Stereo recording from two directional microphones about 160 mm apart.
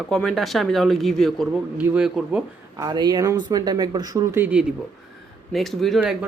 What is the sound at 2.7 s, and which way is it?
Speech, 25° right (ahead or behind).